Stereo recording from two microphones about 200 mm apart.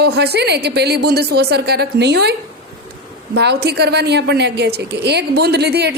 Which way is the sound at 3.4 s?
55° right (ahead or behind).